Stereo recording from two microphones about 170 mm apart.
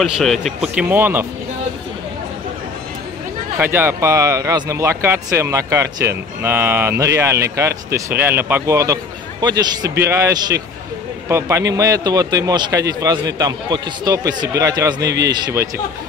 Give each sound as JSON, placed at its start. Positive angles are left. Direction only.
{"t": 0.0, "sound": "speech", "side_deg": 0}
{"t": 3.5, "sound": "a man's voice", "side_deg": -15}